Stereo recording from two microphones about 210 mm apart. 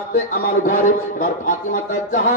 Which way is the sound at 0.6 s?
40° left (ahead or behind).